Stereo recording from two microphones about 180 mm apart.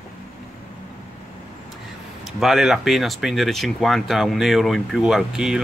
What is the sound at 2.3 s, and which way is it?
Speech, centre (ahead or behind).